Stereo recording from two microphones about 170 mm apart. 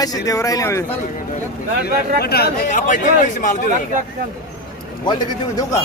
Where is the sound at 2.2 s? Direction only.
65° left (ahead or behind).